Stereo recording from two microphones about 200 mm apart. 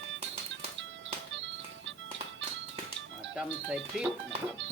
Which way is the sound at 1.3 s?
70° right (ahead or behind).